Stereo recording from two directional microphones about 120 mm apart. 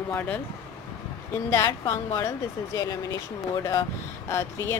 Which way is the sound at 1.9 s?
25° left (ahead or behind).